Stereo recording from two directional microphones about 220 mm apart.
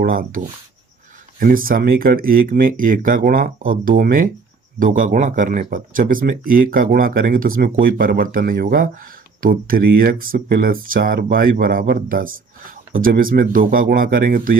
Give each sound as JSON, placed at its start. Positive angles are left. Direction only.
{"t": 0.0, "sound": "speech", "side_deg": -40}